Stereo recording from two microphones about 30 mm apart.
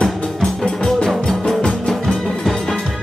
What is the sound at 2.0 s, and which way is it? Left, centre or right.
Music, centre.